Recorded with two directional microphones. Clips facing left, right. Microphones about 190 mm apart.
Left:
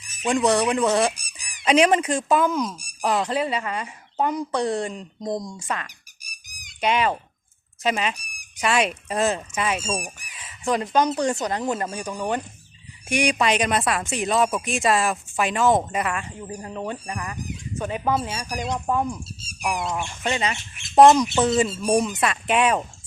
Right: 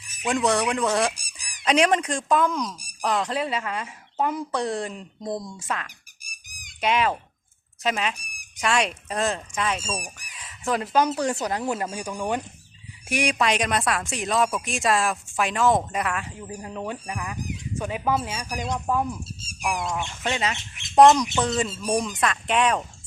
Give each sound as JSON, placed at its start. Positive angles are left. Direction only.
{"t": 0.3, "sound": "speech", "side_deg": 0}
{"t": 6.2, "sound": "a sound", "side_deg": -50}
{"t": 6.8, "sound": "speech", "side_deg": 0}
{"t": 20.2, "sound": "speech", "side_deg": 0}